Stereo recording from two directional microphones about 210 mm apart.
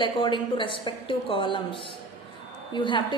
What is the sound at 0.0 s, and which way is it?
A woman's voice, 25° left (ahead or behind).